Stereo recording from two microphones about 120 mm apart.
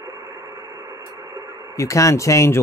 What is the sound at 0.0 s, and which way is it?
Radio, 25° right (ahead or behind).